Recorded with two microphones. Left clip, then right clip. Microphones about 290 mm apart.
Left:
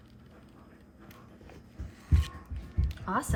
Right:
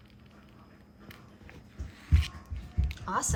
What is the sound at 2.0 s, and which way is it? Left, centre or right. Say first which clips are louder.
Heart sounds: right 1 dB; centre.